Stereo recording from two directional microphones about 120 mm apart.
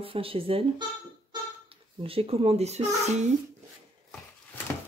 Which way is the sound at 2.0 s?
50° right (ahead or behind).